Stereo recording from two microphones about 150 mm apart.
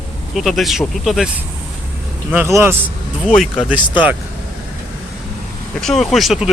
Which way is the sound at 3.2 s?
5° left (ahead or behind).